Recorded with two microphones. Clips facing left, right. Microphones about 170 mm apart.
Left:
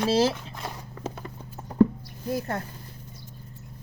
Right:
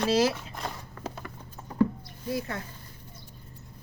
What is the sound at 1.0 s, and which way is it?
Clip-clop, 20° left (ahead or behind).